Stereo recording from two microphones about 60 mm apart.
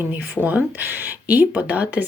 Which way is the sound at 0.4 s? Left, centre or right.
Right.